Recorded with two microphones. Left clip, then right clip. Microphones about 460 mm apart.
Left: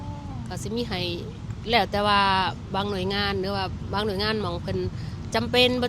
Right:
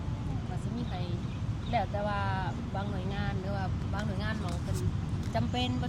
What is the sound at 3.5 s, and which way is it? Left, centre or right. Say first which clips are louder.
Speech: left 9 dB; left.